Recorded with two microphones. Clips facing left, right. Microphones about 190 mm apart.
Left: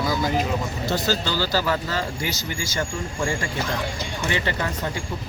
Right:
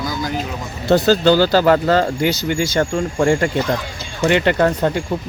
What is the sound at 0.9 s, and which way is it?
Speech, 60° right (ahead or behind).